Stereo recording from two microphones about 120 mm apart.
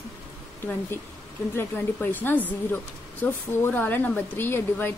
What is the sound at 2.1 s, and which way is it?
A woman's voice, 15° left (ahead or behind).